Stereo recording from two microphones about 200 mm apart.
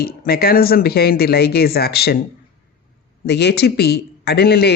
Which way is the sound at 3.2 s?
55° left (ahead or behind).